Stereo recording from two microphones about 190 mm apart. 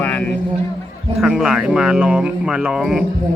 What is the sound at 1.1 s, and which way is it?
Speech, 5° right (ahead or behind).